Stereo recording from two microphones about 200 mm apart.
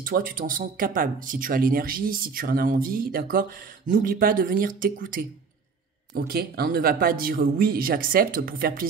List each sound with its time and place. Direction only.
0.0 s speech: 45° right (ahead or behind)